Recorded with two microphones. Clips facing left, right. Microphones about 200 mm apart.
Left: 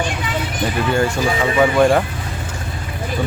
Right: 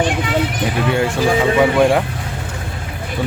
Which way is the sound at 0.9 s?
Centre (ahead or behind).